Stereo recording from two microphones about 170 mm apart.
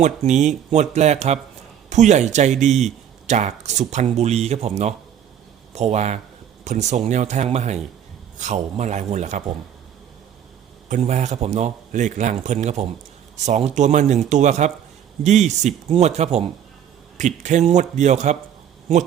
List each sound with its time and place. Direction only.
0.0 s speech: 45° right (ahead or behind)
10.8 s speech: 45° right (ahead or behind)